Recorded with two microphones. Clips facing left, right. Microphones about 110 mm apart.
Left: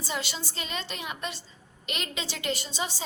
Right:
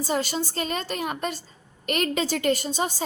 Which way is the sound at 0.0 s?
45° right (ahead or behind).